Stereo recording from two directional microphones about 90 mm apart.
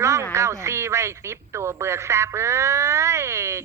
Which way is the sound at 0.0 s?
35° right (ahead or behind).